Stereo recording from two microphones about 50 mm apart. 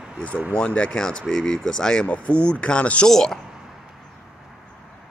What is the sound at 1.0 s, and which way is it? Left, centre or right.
Speech, centre.